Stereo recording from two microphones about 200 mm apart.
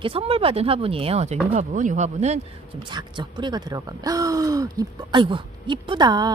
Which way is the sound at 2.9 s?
20° right (ahead or behind).